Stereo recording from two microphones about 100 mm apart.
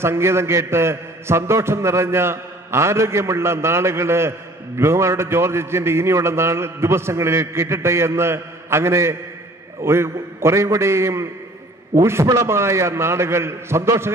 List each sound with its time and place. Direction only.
0.0 s a man's voice: 25° right (ahead or behind)